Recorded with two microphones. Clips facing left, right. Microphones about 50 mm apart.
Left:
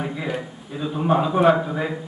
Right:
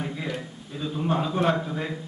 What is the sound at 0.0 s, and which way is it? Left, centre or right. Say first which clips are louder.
A man's voice: left 4 dB; centre.